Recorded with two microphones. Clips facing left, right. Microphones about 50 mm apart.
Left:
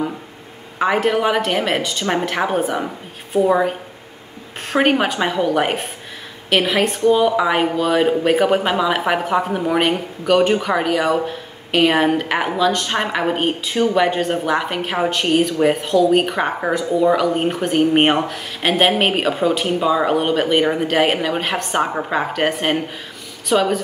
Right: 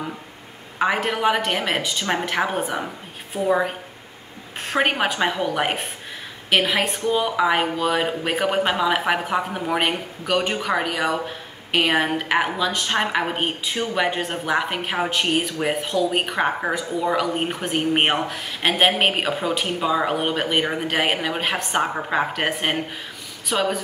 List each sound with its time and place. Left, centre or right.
0.7 s speech: centre
3.3 s a woman's voice: left
4.6 s speech: centre